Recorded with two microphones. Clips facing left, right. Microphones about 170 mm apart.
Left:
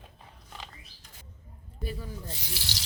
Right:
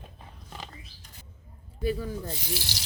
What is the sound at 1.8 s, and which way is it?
Speech, 90° right.